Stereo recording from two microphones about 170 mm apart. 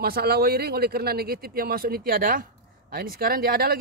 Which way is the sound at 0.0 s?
65° right (ahead or behind).